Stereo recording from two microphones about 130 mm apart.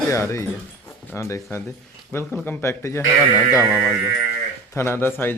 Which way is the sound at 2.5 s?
20° left (ahead or behind).